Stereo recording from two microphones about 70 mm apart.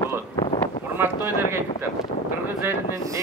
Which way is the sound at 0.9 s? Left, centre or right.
Right.